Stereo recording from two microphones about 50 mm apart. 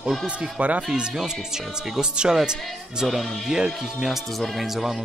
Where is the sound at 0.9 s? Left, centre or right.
Centre.